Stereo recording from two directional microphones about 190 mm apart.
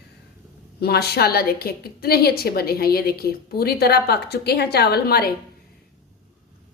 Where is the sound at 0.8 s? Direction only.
55° left (ahead or behind).